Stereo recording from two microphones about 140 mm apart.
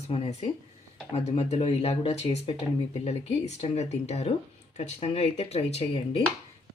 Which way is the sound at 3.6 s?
50° left (ahead or behind).